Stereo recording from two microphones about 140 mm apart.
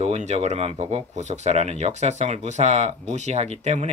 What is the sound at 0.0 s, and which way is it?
Speech, 55° right (ahead or behind).